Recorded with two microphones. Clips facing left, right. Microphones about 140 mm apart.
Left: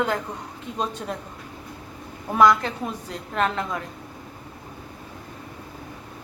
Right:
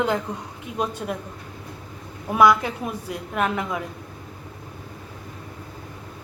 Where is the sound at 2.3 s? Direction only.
10° right (ahead or behind).